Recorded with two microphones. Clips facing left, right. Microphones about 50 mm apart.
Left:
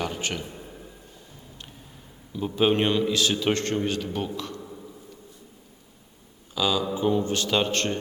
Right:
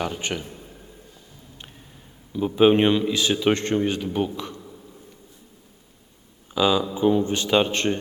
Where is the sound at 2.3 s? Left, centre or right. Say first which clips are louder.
Right 5 dB; centre.